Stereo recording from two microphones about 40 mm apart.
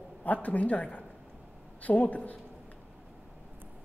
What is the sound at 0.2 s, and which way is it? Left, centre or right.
A woman's voice, left.